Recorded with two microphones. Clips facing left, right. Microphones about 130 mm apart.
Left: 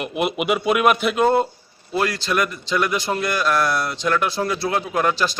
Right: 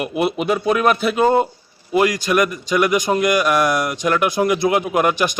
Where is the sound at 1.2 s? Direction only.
10° right (ahead or behind).